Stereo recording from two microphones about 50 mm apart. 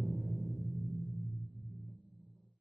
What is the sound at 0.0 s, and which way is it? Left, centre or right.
Music, centre.